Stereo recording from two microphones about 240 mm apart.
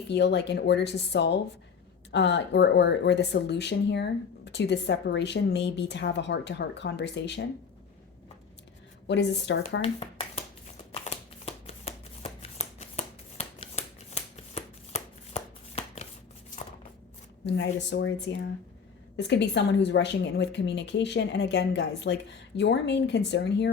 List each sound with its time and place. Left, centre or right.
0.1 s speech: left
9.0 s speech: left
9.8 s a sound: left
10.9 s shuffling cards: left
17.4 s speech: left